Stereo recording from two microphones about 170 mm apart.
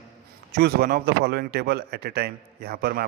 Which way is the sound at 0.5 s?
65° right (ahead or behind).